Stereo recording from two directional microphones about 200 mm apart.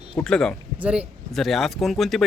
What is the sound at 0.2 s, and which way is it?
Speech, 5° left (ahead or behind).